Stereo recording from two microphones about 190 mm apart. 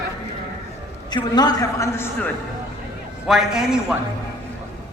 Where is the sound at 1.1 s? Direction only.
20° left (ahead or behind).